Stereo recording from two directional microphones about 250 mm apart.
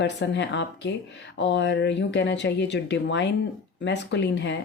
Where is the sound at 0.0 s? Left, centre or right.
Left.